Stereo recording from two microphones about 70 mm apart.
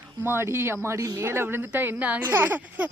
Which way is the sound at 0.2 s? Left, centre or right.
Right.